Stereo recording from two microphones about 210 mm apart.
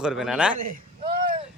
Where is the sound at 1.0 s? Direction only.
45° right (ahead or behind).